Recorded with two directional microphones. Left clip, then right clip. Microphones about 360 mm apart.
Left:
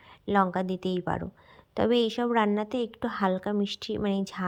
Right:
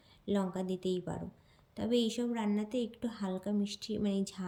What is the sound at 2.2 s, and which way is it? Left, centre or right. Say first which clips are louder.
Speech: left 11 dB; left.